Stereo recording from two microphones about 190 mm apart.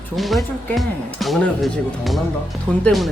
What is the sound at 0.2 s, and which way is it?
Speech, centre (ahead or behind).